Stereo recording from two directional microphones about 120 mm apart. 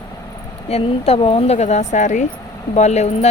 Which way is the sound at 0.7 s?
55° left (ahead or behind).